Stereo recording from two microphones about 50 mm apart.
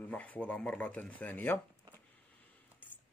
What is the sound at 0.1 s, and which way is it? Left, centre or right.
Mantra, left.